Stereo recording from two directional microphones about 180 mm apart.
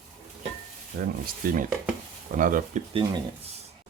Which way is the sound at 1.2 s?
50° right (ahead or behind).